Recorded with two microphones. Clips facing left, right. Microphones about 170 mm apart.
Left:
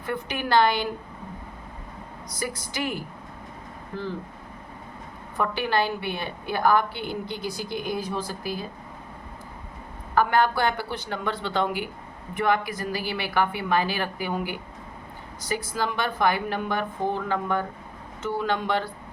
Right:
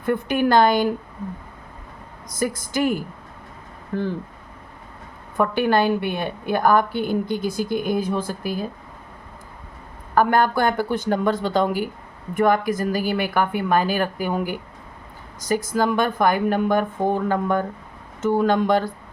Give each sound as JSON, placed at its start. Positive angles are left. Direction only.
{"t": 0.0, "sound": "a woman's voice", "side_deg": -50}
{"t": 2.3, "sound": "a woman's voice", "side_deg": -50}
{"t": 5.4, "sound": "a woman's voice", "side_deg": -50}
{"t": 10.2, "sound": "a woman's voice", "side_deg": -45}